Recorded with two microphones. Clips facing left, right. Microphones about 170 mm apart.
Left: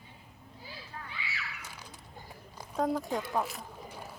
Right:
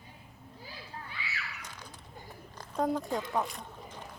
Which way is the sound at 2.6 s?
5° left (ahead or behind).